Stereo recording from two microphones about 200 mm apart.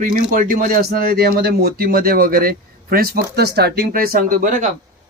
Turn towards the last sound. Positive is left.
turn(degrees=-40)  # may be behind; listen again after turning